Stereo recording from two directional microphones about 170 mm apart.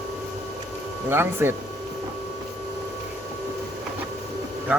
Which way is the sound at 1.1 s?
15° right (ahead or behind).